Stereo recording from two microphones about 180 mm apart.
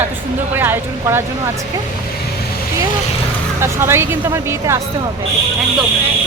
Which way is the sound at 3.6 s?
15° right (ahead or behind).